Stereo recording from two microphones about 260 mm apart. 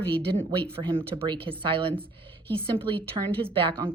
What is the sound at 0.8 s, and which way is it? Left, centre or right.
A woman's voice, centre.